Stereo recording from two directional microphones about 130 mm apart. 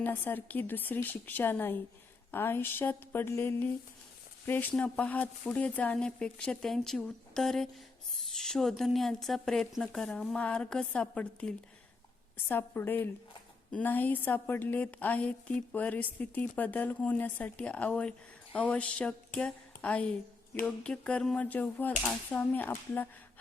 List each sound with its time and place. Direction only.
0.0 s speech: 15° left (ahead or behind)